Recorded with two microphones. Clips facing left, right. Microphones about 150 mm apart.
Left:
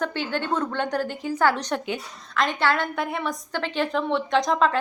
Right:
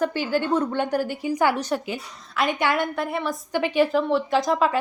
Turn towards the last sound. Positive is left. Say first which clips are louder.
# even
turn(degrees=-5)  # may be behind; listen again after turning